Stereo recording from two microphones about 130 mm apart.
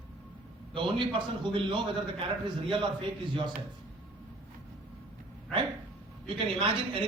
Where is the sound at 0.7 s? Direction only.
40° right (ahead or behind).